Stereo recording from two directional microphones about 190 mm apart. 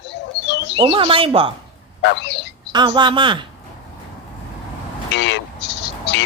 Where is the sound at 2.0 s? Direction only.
65° left (ahead or behind).